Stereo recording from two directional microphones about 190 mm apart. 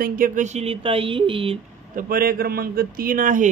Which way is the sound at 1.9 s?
50° right (ahead or behind).